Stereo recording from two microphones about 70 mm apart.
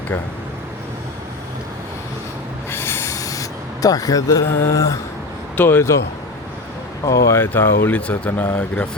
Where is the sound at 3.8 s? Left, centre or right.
Left.